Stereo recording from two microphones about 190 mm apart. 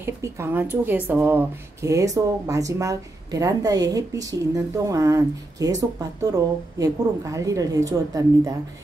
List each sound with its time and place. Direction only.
0.0 s speech: 15° right (ahead or behind)